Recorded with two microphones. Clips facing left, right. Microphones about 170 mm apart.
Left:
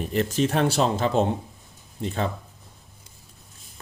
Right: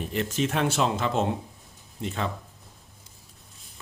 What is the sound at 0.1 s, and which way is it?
Speech, 40° left (ahead or behind).